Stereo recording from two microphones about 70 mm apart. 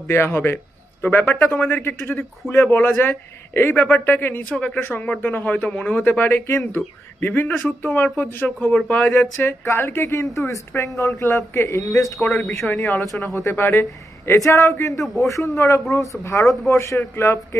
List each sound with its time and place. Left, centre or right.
0.0 s a man's voice: left
4.7 s a man's voice: left
12.6 s speech: left
13.2 s a man's voice: left